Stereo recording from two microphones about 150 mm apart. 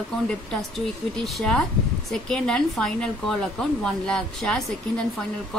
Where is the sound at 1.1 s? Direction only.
Centre (ahead or behind).